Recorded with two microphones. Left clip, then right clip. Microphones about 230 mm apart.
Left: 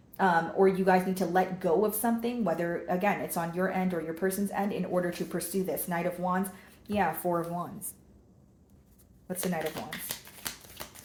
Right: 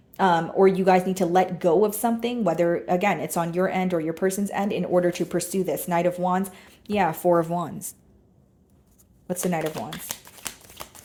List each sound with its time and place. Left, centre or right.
0.2 s a woman's voice: right
9.2 s speech: right
10.1 s shuffling cards: right